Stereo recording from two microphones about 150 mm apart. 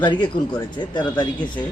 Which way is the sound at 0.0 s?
30° left (ahead or behind).